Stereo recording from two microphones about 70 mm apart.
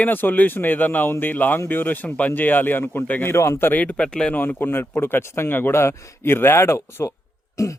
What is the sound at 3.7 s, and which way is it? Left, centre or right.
Speech, left.